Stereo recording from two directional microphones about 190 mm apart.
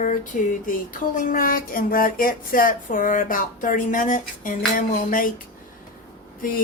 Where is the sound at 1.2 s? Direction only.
45° left (ahead or behind).